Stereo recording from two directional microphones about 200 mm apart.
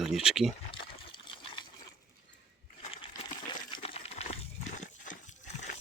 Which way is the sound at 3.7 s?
30° left (ahead or behind).